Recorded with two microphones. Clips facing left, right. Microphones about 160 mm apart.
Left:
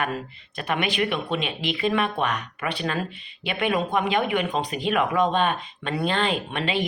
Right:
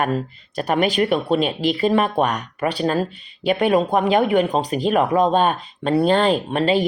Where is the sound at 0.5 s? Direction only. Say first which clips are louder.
Right 7 dB; 40° right (ahead or behind).